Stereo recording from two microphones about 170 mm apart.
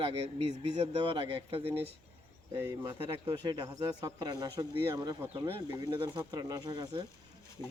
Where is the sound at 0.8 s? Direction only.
30° right (ahead or behind).